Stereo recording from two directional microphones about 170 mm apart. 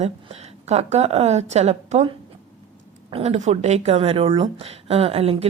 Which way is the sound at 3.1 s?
40° right (ahead or behind).